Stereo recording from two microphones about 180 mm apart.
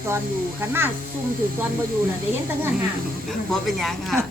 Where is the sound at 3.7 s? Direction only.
Centre (ahead or behind).